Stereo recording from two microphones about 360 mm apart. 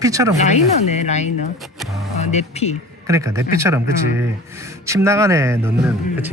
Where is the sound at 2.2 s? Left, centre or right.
Centre.